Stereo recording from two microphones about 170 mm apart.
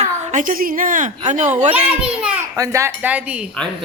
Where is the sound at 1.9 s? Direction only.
5° right (ahead or behind).